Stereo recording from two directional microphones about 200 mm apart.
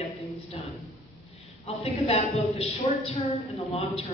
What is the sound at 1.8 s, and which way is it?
A woman's voice, 30° left (ahead or behind).